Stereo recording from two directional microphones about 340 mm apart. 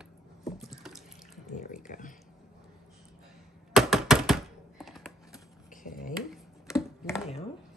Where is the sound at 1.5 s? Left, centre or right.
Left.